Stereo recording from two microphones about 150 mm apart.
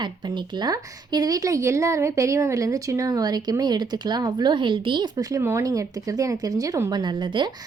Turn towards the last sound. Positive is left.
turn(degrees=-30)  # may be behind; listen again after turning